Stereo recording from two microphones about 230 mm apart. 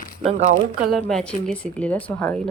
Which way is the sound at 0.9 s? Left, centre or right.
Centre.